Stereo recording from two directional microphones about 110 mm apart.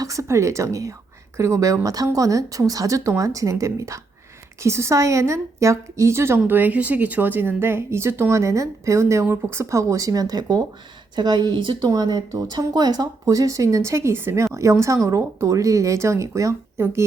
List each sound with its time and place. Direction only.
0.0 s a woman's voice: 30° right (ahead or behind)